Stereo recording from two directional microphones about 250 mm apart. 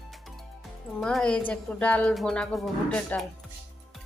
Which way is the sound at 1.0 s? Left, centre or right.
Centre.